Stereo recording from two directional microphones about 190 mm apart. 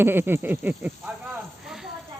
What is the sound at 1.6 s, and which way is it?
Snake, centre (ahead or behind).